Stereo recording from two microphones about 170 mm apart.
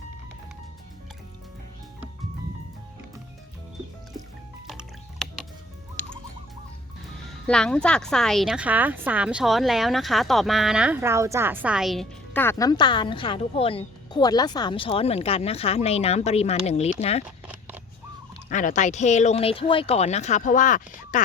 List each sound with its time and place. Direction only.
4.6 s music: centre (ahead or behind)
6.0 s rodents: 10° left (ahead or behind)
7.4 s a woman's voice: 5° left (ahead or behind)
12.3 s speech: 15° left (ahead or behind); by 17.2 s 40° left (ahead or behind)
17.2 s shuffling cards: 10° right (ahead or behind)
18.4 s speech: 45° left (ahead or behind)